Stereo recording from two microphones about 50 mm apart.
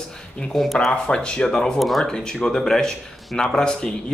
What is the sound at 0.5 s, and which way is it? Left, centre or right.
Speech, centre.